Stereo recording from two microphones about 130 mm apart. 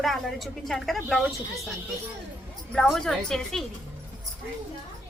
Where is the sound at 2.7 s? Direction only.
5° left (ahead or behind).